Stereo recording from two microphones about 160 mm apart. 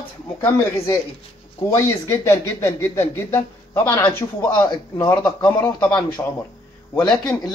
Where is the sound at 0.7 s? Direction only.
15° left (ahead or behind).